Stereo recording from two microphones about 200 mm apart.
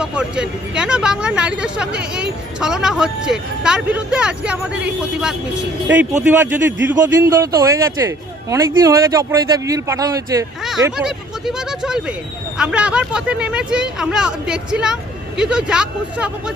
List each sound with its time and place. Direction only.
0.0 s speech: 5° right (ahead or behind)
6.2 s a man's voice: 10° right (ahead or behind)
10.9 s speech: centre (ahead or behind)